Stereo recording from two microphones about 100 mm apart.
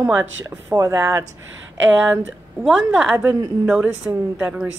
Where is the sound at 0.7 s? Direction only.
30° right (ahead or behind).